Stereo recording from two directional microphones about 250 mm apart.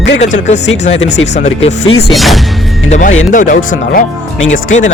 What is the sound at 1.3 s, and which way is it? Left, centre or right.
Speech, left.